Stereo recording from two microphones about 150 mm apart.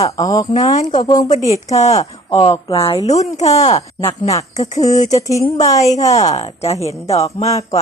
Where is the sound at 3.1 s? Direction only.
50° left (ahead or behind).